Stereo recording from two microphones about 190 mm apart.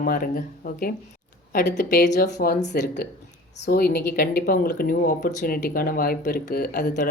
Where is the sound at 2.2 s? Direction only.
55° left (ahead or behind).